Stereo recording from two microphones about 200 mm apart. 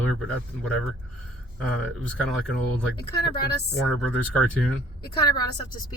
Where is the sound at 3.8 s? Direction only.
5° left (ahead or behind).